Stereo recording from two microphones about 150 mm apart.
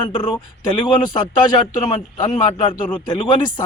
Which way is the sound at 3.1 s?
30° left (ahead or behind).